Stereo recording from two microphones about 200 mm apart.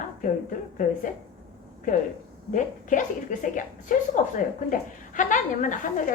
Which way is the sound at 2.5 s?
40° left (ahead or behind).